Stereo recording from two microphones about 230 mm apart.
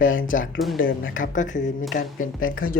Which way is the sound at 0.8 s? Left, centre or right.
Left.